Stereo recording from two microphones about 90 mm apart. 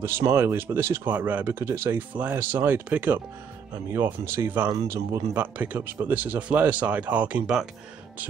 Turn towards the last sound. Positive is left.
turn(degrees=-15)  # may be behind; listen again after turning